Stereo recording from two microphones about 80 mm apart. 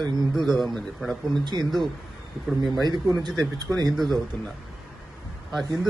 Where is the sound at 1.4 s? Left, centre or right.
Right.